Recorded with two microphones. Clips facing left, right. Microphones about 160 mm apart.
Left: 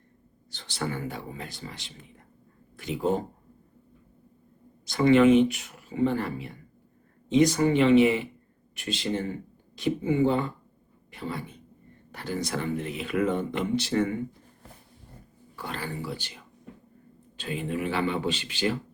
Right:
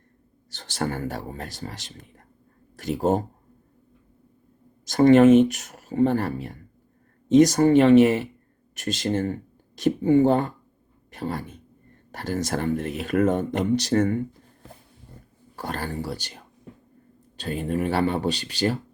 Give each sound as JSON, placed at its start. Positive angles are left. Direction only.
{"t": 0.5, "sound": "speech", "side_deg": -45}
{"t": 4.9, "sound": "speech", "side_deg": -45}
{"t": 15.5, "sound": "speech", "side_deg": -45}